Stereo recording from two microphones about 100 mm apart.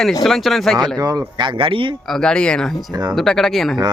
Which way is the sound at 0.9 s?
40° right (ahead or behind).